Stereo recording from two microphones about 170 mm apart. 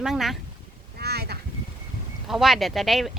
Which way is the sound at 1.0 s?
70° right (ahead or behind).